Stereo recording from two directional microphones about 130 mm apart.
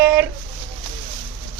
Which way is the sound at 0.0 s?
15° right (ahead or behind).